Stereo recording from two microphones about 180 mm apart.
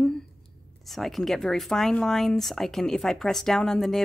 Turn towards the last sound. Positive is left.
turn(degrees=0)  # may be behind; listen again after turning